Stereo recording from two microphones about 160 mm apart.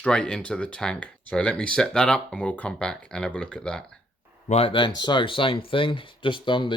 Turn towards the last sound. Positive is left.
turn(degrees=30)  # may be behind; listen again after turning